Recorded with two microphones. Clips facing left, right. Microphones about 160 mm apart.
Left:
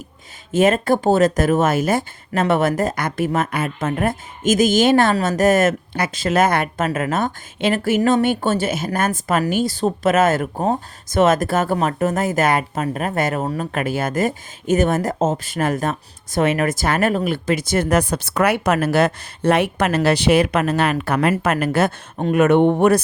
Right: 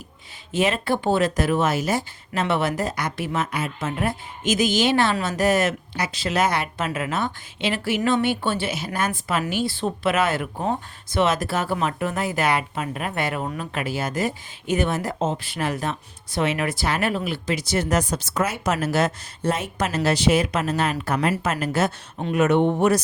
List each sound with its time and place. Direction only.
0.5 s speech: 45° left (ahead or behind)